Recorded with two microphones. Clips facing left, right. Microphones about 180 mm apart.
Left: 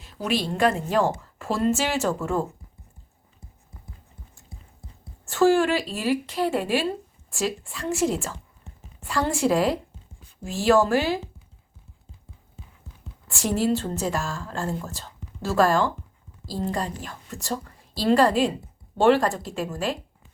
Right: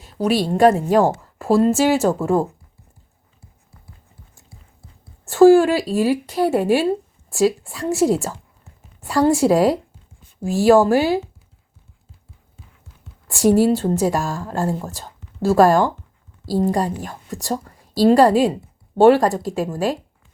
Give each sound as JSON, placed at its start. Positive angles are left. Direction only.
{"t": 0.0, "sound": "a woman's voice", "side_deg": -40}
{"t": 5.2, "sound": "a woman's voice", "side_deg": -35}
{"t": 13.2, "sound": "a woman's voice", "side_deg": -35}